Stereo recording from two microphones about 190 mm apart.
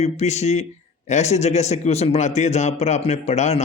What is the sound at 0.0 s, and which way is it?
A man's voice, 35° left (ahead or behind).